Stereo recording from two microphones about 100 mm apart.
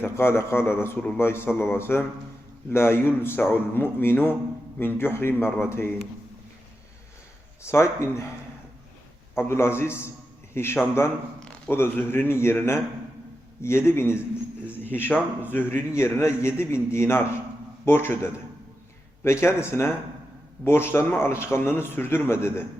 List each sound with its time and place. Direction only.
0.0 s a man's voice: 25° left (ahead or behind)
7.6 s a man's voice: 25° left (ahead or behind)
9.3 s a man's voice: 25° left (ahead or behind)